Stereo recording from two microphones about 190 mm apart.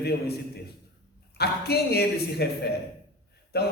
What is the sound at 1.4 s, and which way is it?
A man's voice, 60° left (ahead or behind).